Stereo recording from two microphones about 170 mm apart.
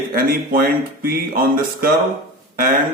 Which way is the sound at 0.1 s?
60° right (ahead or behind).